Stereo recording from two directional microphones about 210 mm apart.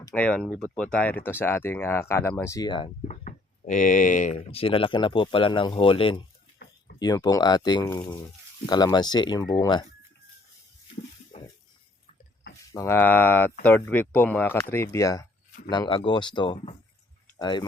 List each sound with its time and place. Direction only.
0.1 s speech: 5° left (ahead or behind); by 2.9 s 20° left (ahead or behind)
3.1 s speech: 35° left (ahead or behind); by 9.8 s 20° left (ahead or behind)
11.3 s a sound: 30° left (ahead or behind)
12.7 s speech: 10° left (ahead or behind)